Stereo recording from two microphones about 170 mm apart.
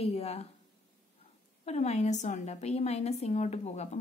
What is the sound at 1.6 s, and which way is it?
A woman's voice, 40° left (ahead or behind).